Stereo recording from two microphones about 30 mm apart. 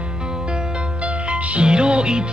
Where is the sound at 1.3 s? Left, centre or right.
Right.